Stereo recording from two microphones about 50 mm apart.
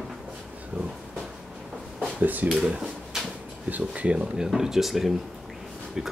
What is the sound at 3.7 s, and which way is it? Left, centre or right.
Speech, right.